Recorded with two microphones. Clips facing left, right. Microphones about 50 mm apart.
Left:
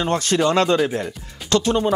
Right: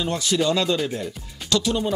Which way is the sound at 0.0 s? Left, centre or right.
Left.